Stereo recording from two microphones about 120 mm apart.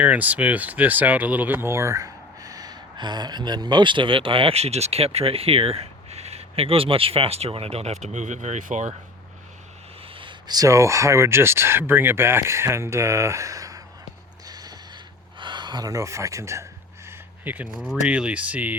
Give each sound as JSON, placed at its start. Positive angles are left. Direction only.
{"t": 0.0, "sound": "speech", "side_deg": -10}
{"t": 10.2, "sound": "speech", "side_deg": -40}
{"t": 14.4, "sound": "mechanisms", "side_deg": -35}
{"t": 15.4, "sound": "speech", "side_deg": -40}
{"t": 17.1, "sound": "a sound", "side_deg": -15}
{"t": 17.7, "sound": "speech", "side_deg": 0}
{"t": 18.1, "sound": "speech", "side_deg": -10}